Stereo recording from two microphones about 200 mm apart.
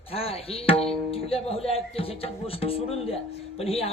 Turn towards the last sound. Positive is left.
turn(degrees=30)  # may be behind; listen again after turning